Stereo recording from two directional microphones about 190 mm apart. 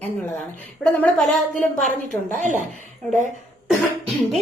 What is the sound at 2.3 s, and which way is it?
Speech, 40° right (ahead or behind).